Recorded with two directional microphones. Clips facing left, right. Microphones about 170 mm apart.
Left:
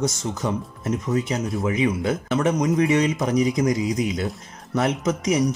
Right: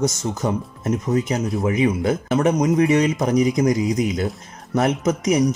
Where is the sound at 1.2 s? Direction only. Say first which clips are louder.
Right 3 dB; 40° right (ahead or behind).